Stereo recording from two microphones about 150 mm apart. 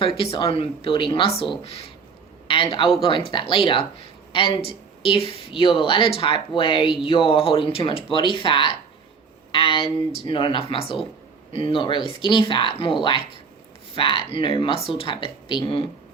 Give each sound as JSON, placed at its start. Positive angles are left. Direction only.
{"t": 0.0, "sound": "a man's voice", "side_deg": 35}